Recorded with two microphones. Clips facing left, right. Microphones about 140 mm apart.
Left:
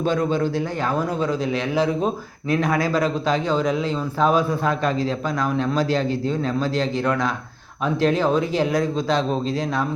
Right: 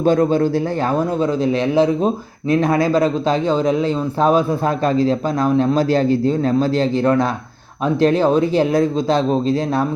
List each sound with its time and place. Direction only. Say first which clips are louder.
0.0 s a man's voice: right 6 dB; 40° right (ahead or behind)
2.5 s a man's voice: right 5 dB; 25° right (ahead or behind)